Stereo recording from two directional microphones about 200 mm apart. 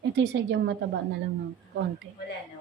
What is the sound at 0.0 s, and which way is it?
Speech, 60° right (ahead or behind).